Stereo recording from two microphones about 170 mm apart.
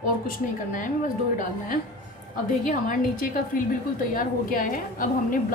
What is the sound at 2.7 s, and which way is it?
A woman's voice, 50° left (ahead or behind).